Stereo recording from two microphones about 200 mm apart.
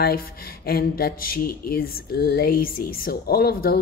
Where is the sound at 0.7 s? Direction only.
50° left (ahead or behind).